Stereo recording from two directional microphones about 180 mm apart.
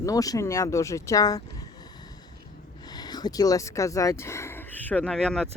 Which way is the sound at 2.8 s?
20° left (ahead or behind).